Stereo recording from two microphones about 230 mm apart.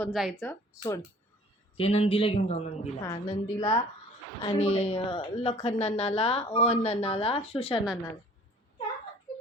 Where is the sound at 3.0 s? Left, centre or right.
Centre.